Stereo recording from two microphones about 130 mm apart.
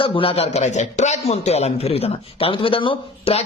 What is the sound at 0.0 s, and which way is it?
A man's voice, 45° left (ahead or behind).